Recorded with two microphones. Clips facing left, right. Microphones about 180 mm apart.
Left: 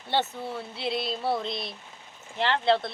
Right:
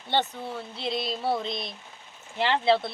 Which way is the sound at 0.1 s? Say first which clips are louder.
Even; 5° left (ahead or behind).